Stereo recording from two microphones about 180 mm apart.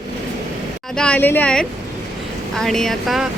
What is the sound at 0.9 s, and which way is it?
A woman's voice, 5° left (ahead or behind).